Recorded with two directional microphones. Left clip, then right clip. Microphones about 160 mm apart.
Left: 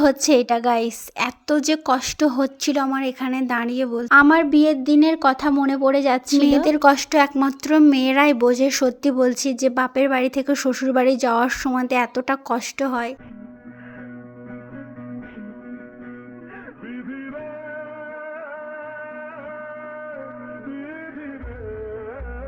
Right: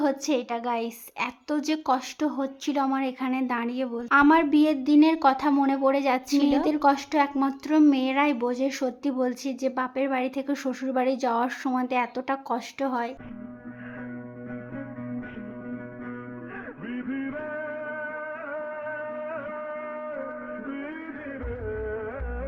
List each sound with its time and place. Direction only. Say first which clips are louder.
0.0 s a woman's voice: left 9 dB; 30° left (ahead or behind)